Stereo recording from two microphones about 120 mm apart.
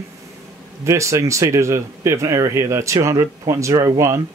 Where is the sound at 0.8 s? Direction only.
25° right (ahead or behind).